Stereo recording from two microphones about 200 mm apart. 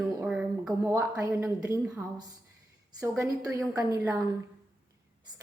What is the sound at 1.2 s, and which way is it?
A woman's voice, 15° right (ahead or behind).